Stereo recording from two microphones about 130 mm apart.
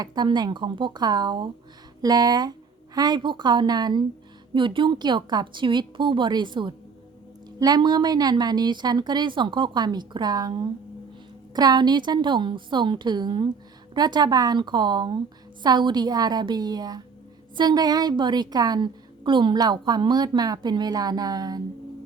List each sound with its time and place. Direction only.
0.0 s a woman's voice: 30° right (ahead or behind)
11.5 s a woman's voice: 30° right (ahead or behind)